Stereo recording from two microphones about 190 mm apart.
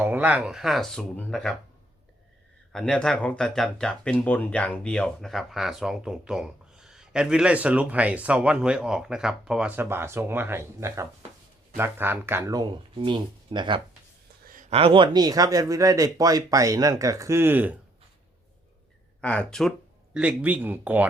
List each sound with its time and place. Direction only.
0.0 s speech: 10° right (ahead or behind)
2.7 s speech: 5° left (ahead or behind); by 13.8 s 25° right (ahead or behind)
14.4 s speech: 45° right (ahead or behind); by 17.7 s 10° right (ahead or behind)
19.2 s speech: 5° left (ahead or behind); by 21.1 s 10° right (ahead or behind)